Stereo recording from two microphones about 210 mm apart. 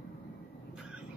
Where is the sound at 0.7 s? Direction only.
5° right (ahead or behind).